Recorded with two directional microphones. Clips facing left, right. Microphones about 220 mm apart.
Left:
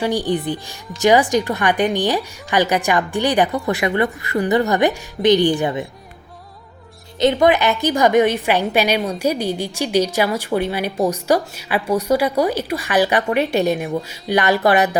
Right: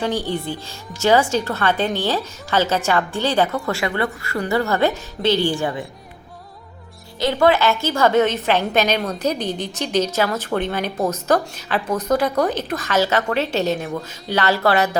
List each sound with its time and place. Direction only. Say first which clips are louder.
0.0 s a woman's voice: left 3 dB; 15° left (ahead or behind)
7.2 s a woman's voice: left 2 dB; 20° left (ahead or behind)